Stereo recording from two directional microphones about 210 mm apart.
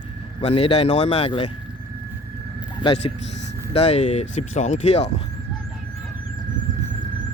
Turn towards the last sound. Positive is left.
turn(degrees=-40)  # may be behind; listen again after turning